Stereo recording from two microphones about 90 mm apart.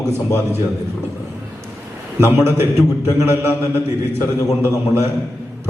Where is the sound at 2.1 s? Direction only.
25° right (ahead or behind).